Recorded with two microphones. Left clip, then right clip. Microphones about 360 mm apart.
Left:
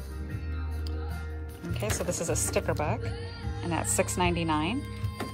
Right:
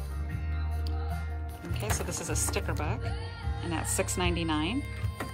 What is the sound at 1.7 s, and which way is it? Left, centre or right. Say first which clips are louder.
Speech: left 4 dB; centre.